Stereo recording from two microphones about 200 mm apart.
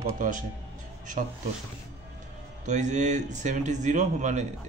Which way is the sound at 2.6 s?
35° right (ahead or behind).